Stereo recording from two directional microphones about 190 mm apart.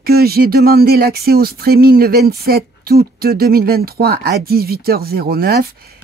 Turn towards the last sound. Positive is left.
turn(degrees=-55)  # may be behind; listen again after turning